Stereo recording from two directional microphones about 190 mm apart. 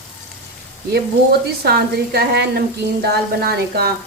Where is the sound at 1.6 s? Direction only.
55° right (ahead or behind).